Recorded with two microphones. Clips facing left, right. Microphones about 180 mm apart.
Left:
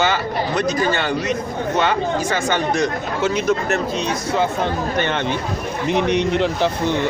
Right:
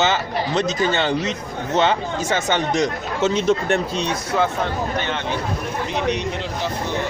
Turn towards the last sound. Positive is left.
turn(degrees=65)  # may be behind; listen again after turning